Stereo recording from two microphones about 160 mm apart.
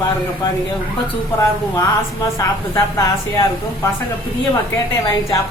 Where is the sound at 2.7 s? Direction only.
20° left (ahead or behind).